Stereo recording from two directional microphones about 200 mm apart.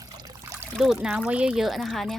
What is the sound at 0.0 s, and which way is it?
Trickle, 20° right (ahead or behind).